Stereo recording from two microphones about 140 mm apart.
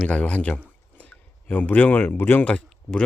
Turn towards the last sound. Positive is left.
turn(degrees=10)  # may be behind; listen again after turning